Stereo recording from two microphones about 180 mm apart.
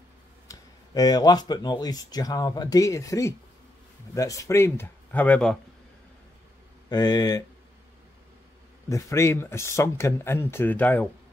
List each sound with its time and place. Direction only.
0.5 s speech: 20° left (ahead or behind)
6.9 s speech: 20° left (ahead or behind)
8.8 s speech: 15° left (ahead or behind)